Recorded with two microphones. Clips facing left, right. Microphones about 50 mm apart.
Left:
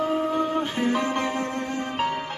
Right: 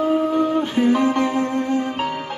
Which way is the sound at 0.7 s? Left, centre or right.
Centre.